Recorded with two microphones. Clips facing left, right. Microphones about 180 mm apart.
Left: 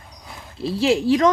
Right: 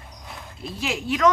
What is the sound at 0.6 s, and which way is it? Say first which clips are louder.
Speech: left 11 dB; 30° left (ahead or behind).